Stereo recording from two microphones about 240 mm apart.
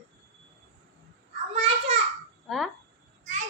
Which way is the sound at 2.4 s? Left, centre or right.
Centre.